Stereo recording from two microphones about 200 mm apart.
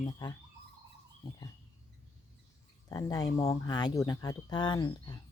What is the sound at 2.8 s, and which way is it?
Speech, 15° left (ahead or behind).